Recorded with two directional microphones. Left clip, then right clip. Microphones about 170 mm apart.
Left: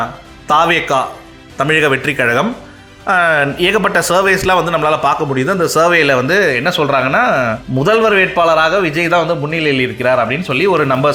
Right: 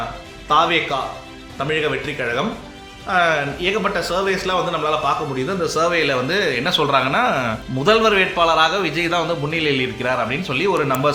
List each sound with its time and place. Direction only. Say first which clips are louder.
0.4 s a man's voice: left 5 dB; 70° left (ahead or behind); by 11.1 s 35° left (ahead or behind)